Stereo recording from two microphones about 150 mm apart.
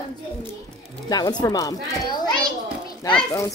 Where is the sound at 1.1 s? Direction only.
25° left (ahead or behind).